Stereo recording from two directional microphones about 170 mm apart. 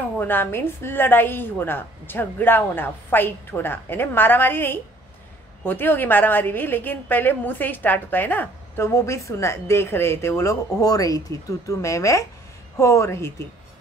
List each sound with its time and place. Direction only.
0.2 s a woman's voice: 10° left (ahead or behind)